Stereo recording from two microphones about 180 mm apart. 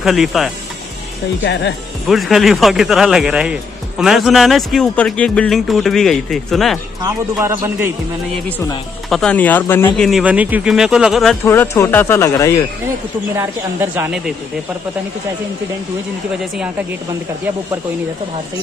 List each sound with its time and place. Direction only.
0.0 s a man's voice: centre (ahead or behind)
1.4 s speech: 70° left (ahead or behind)
2.0 s a man's voice: centre (ahead or behind)
7.0 s a man's voice: 15° right (ahead or behind)
9.1 s speech: 5° left (ahead or behind)
9.9 s a man's voice: centre (ahead or behind)
11.4 s speech: 15° left (ahead or behind)
13.4 s a man's voice: 10° right (ahead or behind)